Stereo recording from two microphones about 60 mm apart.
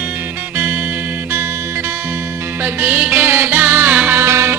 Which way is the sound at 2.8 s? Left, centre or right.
Right.